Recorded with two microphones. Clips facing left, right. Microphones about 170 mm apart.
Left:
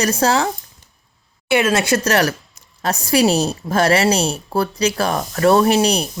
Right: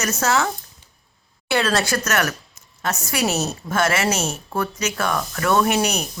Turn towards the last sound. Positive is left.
turn(degrees=30)  # may be behind; listen again after turning